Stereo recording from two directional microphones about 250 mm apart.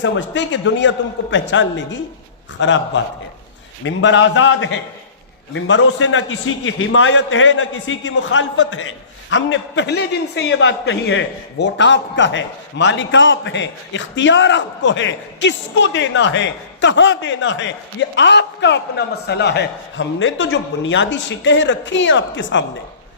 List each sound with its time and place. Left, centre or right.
0.0 s a man's voice: left